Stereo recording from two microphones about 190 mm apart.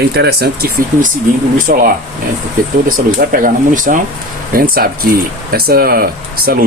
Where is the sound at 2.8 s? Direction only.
50° right (ahead or behind).